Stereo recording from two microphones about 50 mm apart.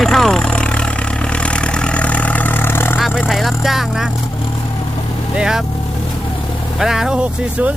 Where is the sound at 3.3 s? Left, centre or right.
Centre.